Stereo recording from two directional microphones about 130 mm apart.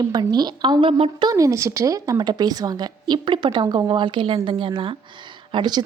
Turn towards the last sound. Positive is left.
turn(degrees=-35)  # may be behind; listen again after turning